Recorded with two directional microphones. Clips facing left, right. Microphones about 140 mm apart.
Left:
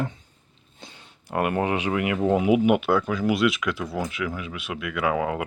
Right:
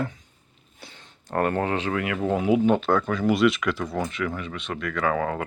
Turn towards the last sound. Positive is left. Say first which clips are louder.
# even
turn(degrees=15)  # may be behind; listen again after turning